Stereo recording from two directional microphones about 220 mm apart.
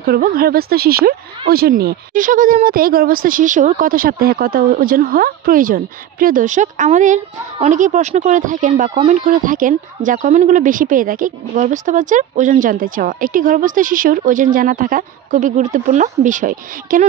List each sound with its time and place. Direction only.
0.0 s speech: 40° right (ahead or behind)